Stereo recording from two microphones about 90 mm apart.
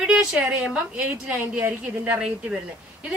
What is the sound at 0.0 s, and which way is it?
A woman's voice, 10° right (ahead or behind).